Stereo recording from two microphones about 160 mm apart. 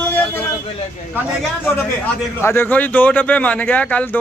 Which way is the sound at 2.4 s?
15° left (ahead or behind).